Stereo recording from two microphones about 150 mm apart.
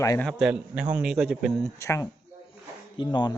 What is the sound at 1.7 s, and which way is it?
Speech, 20° left (ahead or behind).